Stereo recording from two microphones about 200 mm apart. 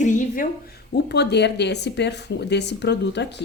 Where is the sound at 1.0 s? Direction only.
55° left (ahead or behind).